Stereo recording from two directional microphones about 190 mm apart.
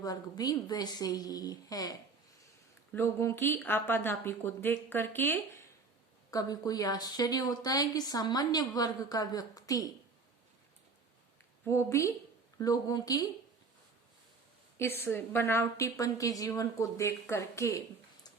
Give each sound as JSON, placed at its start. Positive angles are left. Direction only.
{"t": 0.0, "sound": "a woman's voice", "side_deg": 20}
{"t": 11.6, "sound": "a woman's voice", "side_deg": 15}
{"t": 15.0, "sound": "a woman's voice", "side_deg": 10}